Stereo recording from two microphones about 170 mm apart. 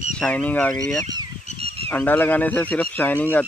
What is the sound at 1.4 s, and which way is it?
Goose, 35° right (ahead or behind).